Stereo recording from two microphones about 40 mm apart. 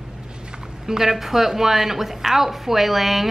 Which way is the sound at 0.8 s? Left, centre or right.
Centre.